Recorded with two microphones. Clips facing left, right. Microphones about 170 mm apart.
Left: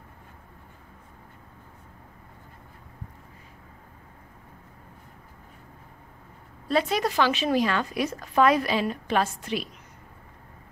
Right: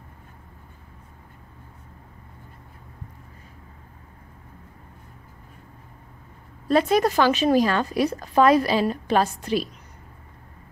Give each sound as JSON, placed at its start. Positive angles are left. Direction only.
{"t": 6.7, "sound": "a woman's voice", "side_deg": -45}